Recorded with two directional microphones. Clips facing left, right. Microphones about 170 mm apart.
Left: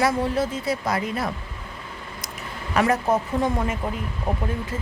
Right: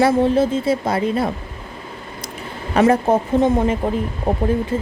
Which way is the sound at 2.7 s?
30° right (ahead or behind).